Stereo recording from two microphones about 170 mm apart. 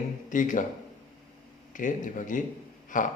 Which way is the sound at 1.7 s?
50° left (ahead or behind).